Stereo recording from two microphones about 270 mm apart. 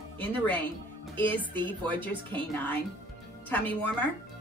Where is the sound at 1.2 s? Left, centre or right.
Centre.